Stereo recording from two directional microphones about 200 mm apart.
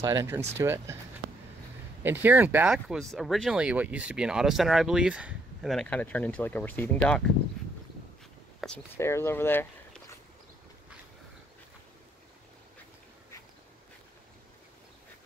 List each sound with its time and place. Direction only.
0.0 s speech: 15° right (ahead or behind)
2.0 s speech: 10° right (ahead or behind)
8.5 s speech: 5° left (ahead or behind)